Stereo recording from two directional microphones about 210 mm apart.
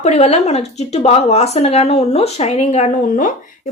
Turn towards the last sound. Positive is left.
turn(degrees=35)  # may be behind; listen again after turning